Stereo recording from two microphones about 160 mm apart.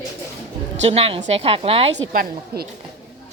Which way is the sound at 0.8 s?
40° right (ahead or behind).